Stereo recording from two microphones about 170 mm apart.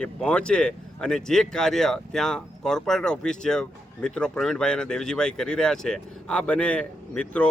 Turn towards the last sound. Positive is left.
turn(degrees=5)  # may be behind; listen again after turning